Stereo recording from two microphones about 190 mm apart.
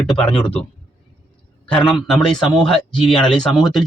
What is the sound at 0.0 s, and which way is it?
Speech, 5° left (ahead or behind).